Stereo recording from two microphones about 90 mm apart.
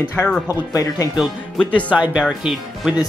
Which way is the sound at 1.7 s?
15° right (ahead or behind).